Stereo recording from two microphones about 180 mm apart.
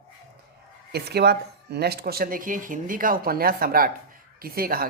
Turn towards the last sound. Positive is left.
turn(degrees=-55)  # may be behind; listen again after turning